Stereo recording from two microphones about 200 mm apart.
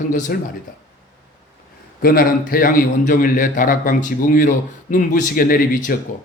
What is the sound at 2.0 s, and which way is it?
A man's voice, 50° left (ahead or behind).